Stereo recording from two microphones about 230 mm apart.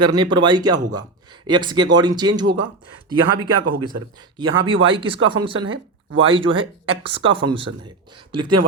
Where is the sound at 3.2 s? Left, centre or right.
Right.